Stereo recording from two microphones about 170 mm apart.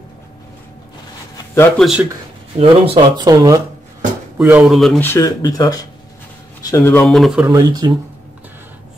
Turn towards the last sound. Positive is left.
turn(degrees=-25)  # may be behind; listen again after turning